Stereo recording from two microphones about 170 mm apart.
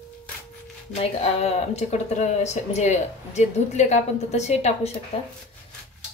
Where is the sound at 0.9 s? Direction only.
35° left (ahead or behind).